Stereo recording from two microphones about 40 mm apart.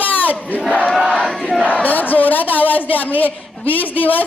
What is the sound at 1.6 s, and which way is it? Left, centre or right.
A woman's voice, left.